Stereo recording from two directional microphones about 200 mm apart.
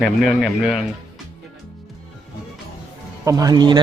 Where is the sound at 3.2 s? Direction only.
15° right (ahead or behind).